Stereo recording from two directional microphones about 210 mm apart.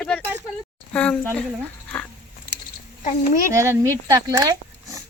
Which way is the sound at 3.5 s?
15° right (ahead or behind).